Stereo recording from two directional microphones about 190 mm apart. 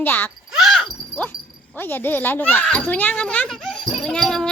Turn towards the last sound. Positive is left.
turn(degrees=5)  # may be behind; listen again after turning